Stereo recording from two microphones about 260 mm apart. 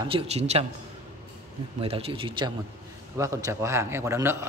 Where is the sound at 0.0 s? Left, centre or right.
Right.